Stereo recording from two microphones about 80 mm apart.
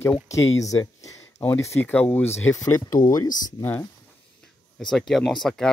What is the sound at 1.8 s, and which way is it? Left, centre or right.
Speech, left.